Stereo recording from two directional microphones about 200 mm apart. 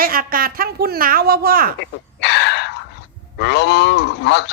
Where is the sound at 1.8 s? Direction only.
60° left (ahead or behind).